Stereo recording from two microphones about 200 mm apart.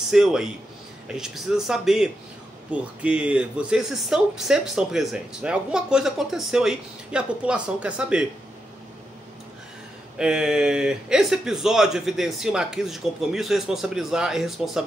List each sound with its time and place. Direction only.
0.1 s speech: centre (ahead or behind)
10.1 s speech: 5° right (ahead or behind)